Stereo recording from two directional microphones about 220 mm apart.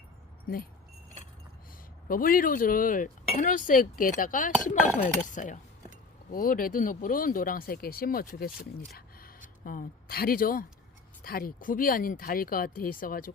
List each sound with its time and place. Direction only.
0.4 s speech: 40° left (ahead or behind)
2.0 s speech: 40° left (ahead or behind)